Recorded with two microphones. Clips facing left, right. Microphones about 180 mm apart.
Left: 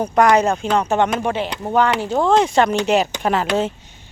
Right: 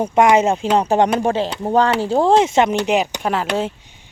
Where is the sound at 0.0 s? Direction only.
25° right (ahead or behind).